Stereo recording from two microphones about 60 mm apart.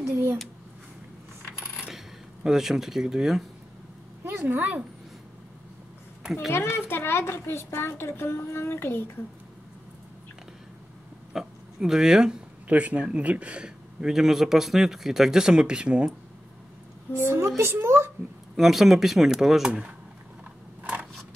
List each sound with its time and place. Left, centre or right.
0.1 s speech: right
2.4 s speech: centre
4.2 s a sound: right
6.5 s a woman's voice: left
11.3 s a sound: centre
12.6 s speech: right
17.1 s a woman's voice: left
17.6 s a child's voice: right
18.6 s speech: centre
20.8 s a sound: centre